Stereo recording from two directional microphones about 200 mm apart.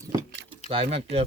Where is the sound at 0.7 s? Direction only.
30° right (ahead or behind).